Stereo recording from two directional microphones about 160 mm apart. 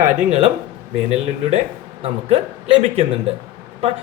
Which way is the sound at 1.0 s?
40° right (ahead or behind).